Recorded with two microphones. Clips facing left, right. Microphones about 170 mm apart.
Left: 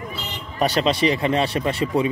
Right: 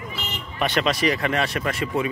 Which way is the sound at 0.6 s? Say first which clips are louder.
Left 3 dB; 35° left (ahead or behind).